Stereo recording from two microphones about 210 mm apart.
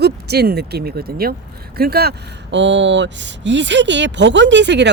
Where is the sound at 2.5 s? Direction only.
60° right (ahead or behind).